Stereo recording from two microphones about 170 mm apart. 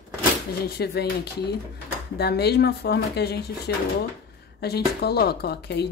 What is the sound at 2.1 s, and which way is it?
Speech, 70° left (ahead or behind).